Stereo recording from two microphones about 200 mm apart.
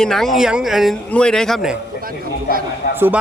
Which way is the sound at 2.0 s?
45° right (ahead or behind).